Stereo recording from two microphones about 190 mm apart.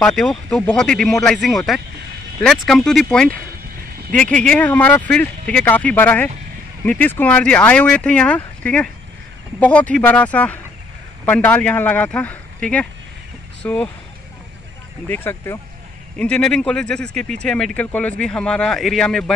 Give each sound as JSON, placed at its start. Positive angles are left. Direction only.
{"t": 0.0, "sound": "speech", "side_deg": 5}
{"t": 15.0, "sound": "speech", "side_deg": 10}